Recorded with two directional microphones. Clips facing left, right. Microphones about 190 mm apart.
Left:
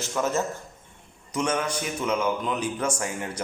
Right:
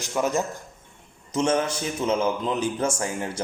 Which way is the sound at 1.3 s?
25° right (ahead or behind).